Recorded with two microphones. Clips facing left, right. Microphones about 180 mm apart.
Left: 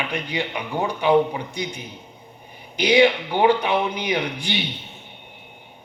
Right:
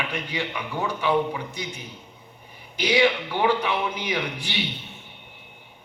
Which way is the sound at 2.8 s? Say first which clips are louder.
Left 4 dB; 20° left (ahead or behind).